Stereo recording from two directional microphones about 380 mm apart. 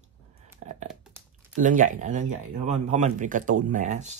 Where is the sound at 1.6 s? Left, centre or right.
Right.